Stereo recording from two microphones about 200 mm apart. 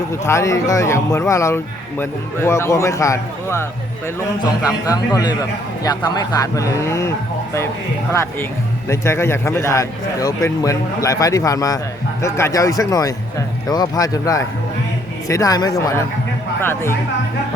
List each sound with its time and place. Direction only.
0.1 s speech: 15° left (ahead or behind)
8.1 s speech: 15° left (ahead or behind)